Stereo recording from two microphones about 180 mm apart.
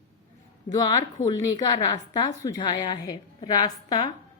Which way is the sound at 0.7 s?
20° left (ahead or behind).